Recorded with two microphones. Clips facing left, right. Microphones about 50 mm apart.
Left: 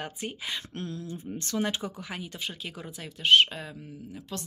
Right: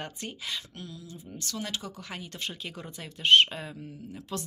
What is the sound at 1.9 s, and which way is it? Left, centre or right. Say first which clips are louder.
Speech: left 2 dB; centre.